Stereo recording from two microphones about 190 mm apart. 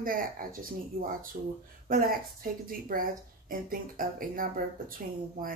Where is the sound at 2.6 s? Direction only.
50° right (ahead or behind).